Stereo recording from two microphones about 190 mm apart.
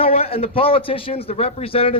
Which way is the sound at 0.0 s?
30° left (ahead or behind).